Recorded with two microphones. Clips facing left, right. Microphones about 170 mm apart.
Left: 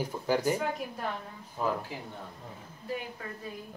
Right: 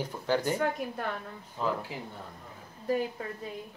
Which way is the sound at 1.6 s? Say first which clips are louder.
Even; 10° left (ahead or behind).